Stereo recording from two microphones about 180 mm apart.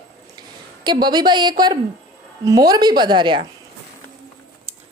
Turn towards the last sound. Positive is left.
turn(degrees=-25)  # may be behind; listen again after turning